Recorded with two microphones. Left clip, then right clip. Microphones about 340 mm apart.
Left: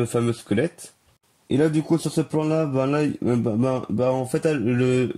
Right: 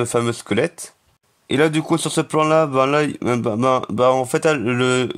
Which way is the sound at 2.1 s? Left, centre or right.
Right.